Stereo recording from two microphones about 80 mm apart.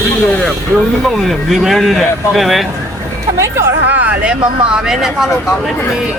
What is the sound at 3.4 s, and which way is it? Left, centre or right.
Speech, right.